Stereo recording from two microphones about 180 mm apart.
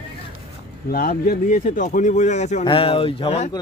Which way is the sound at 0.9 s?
55° left (ahead or behind).